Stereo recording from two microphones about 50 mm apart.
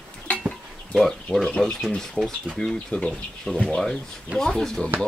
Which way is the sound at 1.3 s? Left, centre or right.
Centre.